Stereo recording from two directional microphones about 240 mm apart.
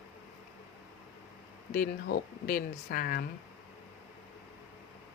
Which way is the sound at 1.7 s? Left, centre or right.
Left.